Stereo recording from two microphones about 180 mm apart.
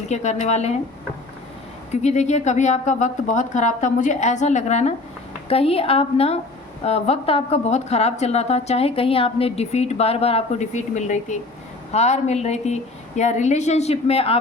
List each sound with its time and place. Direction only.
0.1 s a woman's voice: 40° left (ahead or behind)
1.9 s a woman's voice: 40° left (ahead or behind)